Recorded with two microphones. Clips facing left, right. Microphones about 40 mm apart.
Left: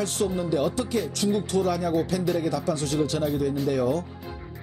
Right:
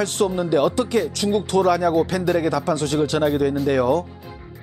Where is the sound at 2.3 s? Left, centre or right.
Right.